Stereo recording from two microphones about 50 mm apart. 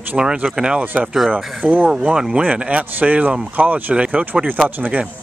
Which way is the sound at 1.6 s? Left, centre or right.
Right.